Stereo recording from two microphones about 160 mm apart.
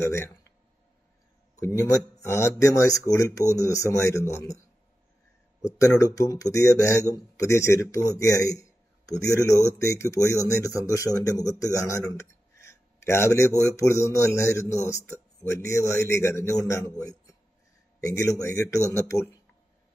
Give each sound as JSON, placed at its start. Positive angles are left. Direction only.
{"t": 0.0, "sound": "a man's voice", "side_deg": 15}
{"t": 1.6, "sound": "a man's voice", "side_deg": 20}
{"t": 5.7, "sound": "speech", "side_deg": 20}
{"t": 8.2, "sound": "a sound", "side_deg": 20}
{"t": 9.2, "sound": "speech", "side_deg": 20}
{"t": 18.0, "sound": "speech", "side_deg": 20}